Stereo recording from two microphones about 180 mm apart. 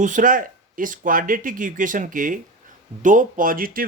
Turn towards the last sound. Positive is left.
turn(degrees=-50)  # may be behind; listen again after turning